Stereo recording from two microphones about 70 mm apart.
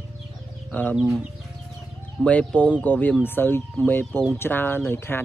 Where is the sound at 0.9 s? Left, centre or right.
Centre.